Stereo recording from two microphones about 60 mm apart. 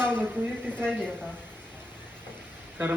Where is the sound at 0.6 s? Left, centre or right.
Centre.